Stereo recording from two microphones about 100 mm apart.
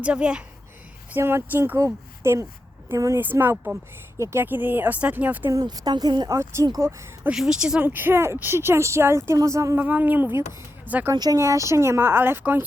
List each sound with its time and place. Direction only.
0.0 s a woman's voice: 10° right (ahead or behind)
1.1 s a woman's voice: 25° right (ahead or behind)
3.2 s a woman's voice: 20° right (ahead or behind)
5.5 s speech: 40° right (ahead or behind)
6.3 s a woman's voice: 30° right (ahead or behind)
7.3 s a woman's voice: 5° right (ahead or behind)
7.9 s a woman's voice: 20° right (ahead or behind)
9.7 s a woman's voice: 15° right (ahead or behind)
11.1 s a woman's voice: 40° right (ahead or behind); by 12.6 s 20° right (ahead or behind)